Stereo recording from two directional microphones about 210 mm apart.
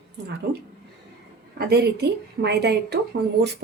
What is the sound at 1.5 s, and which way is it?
A woman's voice, 50° right (ahead or behind).